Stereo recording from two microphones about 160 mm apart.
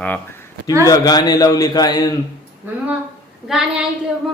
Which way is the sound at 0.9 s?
25° left (ahead or behind).